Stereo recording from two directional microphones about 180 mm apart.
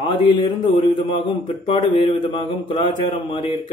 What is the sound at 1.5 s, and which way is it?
A man's voice, 30° left (ahead or behind).